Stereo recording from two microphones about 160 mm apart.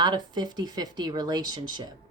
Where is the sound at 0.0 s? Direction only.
25° right (ahead or behind).